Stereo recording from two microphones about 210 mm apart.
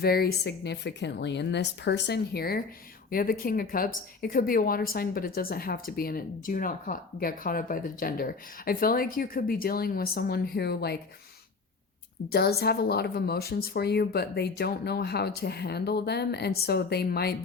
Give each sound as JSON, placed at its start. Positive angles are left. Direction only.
{"t": 0.0, "sound": "speech", "side_deg": 45}
{"t": 12.3, "sound": "speech", "side_deg": 50}